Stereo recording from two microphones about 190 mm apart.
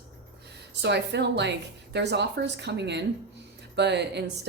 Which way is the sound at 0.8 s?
60° right (ahead or behind).